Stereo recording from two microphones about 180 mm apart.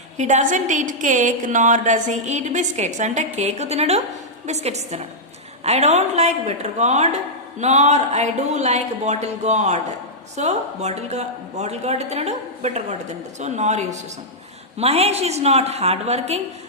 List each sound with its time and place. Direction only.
0.2 s a woman's voice: 40° right (ahead or behind)